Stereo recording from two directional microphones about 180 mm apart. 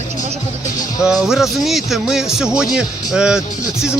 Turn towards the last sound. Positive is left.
turn(degrees=-5)  # may be behind; listen again after turning